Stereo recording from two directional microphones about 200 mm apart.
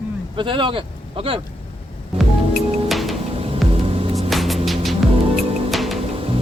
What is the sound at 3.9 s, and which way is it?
Music, 30° right (ahead or behind).